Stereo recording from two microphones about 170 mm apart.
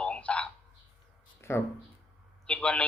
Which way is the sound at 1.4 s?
15° left (ahead or behind).